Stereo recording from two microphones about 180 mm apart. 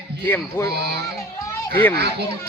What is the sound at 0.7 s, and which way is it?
Speech, 65° right (ahead or behind).